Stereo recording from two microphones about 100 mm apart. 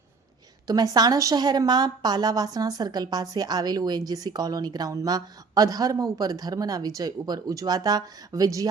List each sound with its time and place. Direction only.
0.7 s a woman's voice: 40° right (ahead or behind)